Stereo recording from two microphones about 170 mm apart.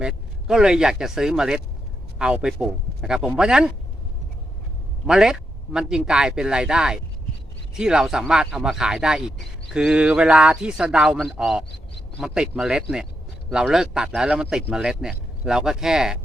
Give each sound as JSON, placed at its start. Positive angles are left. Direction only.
{"t": 0.0, "sound": "speech", "side_deg": -5}
{"t": 5.0, "sound": "speech", "side_deg": -5}